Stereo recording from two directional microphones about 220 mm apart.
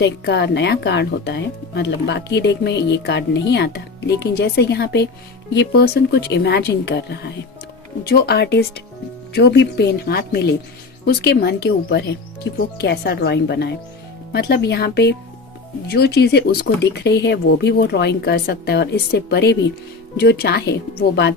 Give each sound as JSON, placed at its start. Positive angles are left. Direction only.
{"t": 0.0, "sound": "speech", "side_deg": 50}